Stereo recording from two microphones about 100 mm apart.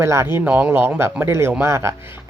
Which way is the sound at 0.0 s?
30° right (ahead or behind).